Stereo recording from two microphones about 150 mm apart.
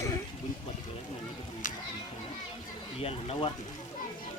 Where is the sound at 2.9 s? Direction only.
40° left (ahead or behind).